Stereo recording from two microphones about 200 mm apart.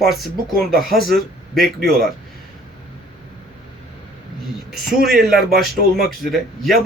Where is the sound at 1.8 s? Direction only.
50° right (ahead or behind).